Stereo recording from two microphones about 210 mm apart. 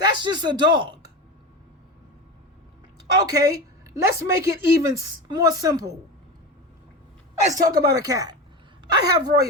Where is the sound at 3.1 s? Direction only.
15° right (ahead or behind).